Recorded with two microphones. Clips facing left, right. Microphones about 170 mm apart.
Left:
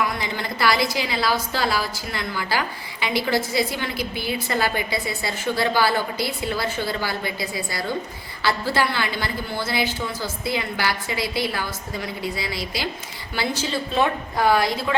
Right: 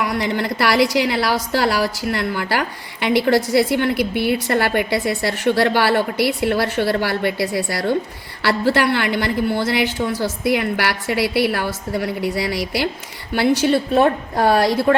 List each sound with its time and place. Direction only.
0.0 s a woman's voice: 65° right (ahead or behind)